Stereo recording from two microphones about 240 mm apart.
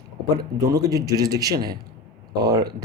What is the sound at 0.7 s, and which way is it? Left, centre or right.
Speech, centre.